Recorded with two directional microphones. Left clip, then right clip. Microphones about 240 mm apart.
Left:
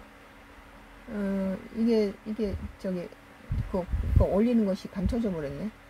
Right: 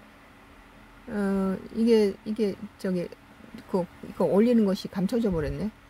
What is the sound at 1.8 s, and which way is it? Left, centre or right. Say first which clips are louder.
Speech: right 4 dB; right.